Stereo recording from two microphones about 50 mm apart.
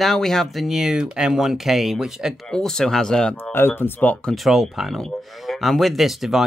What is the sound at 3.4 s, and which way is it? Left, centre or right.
Speech, left.